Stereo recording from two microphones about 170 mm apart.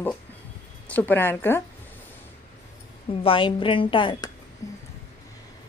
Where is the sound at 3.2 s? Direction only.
30° left (ahead or behind).